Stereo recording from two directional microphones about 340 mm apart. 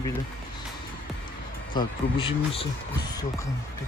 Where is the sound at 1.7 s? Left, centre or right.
Centre.